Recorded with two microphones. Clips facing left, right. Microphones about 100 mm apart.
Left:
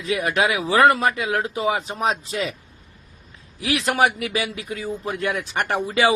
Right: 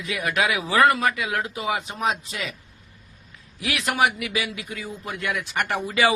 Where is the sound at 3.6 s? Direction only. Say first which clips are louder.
Left 3 dB; 30° left (ahead or behind).